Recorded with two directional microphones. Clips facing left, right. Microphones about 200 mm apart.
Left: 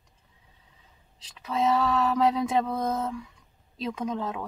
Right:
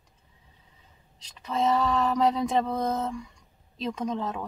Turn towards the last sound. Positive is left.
turn(degrees=5)  # may be behind; listen again after turning